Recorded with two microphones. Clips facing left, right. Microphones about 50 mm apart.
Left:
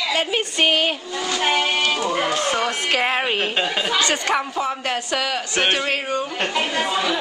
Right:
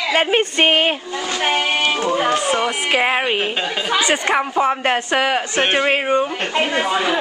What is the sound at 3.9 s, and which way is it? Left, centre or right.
Speech, centre.